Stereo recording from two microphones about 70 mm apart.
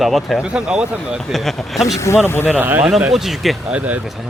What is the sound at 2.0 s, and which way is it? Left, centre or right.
Speech, left.